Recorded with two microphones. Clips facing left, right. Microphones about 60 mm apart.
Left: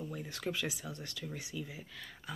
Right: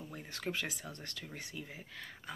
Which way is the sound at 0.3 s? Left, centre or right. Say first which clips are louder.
Even; right.